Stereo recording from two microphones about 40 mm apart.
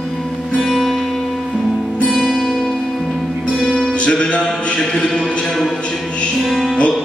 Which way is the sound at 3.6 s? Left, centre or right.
Centre.